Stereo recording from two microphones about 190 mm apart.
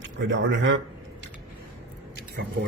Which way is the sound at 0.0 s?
75° right (ahead or behind).